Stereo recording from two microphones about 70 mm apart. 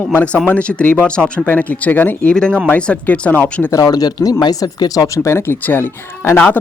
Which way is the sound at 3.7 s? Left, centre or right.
Left.